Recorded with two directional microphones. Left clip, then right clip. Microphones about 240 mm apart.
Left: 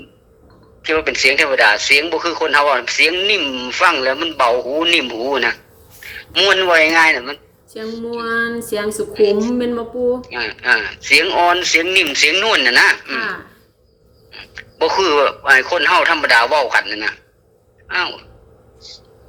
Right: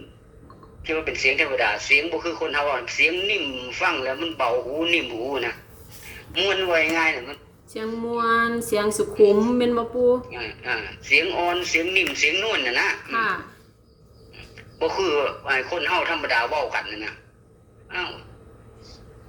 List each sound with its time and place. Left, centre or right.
0.8 s a man's voice: left
7.7 s speech: centre
10.2 s speech: left
13.1 s speech: centre
14.3 s speech: left